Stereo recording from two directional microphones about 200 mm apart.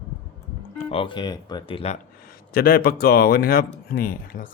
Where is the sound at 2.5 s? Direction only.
50° left (ahead or behind).